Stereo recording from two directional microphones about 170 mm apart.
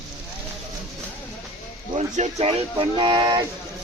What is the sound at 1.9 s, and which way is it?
Speech, 40° right (ahead or behind).